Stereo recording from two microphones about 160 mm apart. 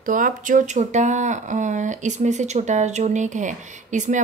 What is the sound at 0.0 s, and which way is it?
Speech, 55° right (ahead or behind).